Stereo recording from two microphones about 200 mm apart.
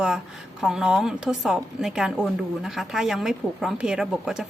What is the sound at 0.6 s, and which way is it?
A woman's voice, 5° right (ahead or behind).